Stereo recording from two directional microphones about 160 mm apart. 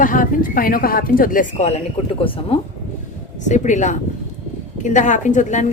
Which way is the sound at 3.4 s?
50° left (ahead or behind).